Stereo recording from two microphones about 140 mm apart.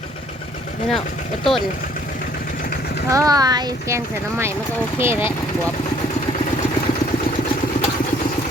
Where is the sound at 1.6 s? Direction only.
85° left.